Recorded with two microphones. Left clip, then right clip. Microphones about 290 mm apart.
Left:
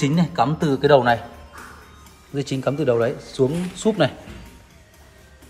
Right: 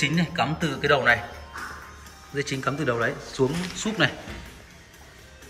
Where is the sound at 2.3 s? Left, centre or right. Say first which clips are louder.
Left 4 dB; centre.